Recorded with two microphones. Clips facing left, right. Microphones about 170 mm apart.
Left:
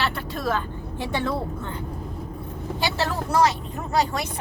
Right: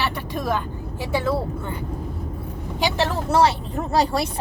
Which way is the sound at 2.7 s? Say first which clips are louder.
Right 3 dB; 15° right (ahead or behind).